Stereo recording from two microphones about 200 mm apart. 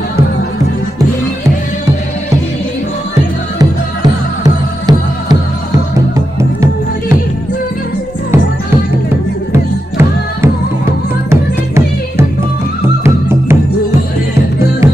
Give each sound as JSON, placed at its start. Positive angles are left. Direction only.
{"t": 4.4, "sound": "music", "side_deg": -20}
{"t": 9.5, "sound": "music", "side_deg": -15}